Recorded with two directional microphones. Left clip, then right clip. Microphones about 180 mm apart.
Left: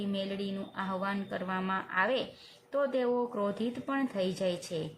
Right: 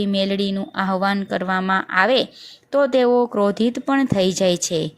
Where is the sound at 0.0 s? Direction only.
40° right (ahead or behind).